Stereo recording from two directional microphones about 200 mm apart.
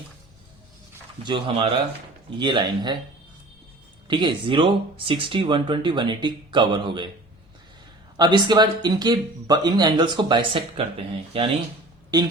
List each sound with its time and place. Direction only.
1.2 s speech: 25° right (ahead or behind)
4.1 s speech: 25° right (ahead or behind)
8.1 s speech: 20° right (ahead or behind)